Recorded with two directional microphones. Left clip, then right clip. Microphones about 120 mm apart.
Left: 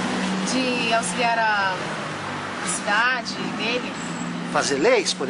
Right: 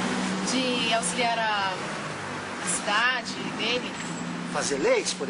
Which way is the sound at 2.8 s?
Centre (ahead or behind).